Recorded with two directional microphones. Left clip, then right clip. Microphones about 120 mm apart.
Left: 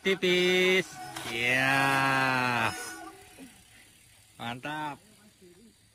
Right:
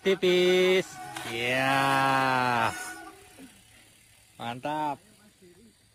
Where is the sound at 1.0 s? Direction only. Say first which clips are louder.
Right 1 dB; centre (ahead or behind).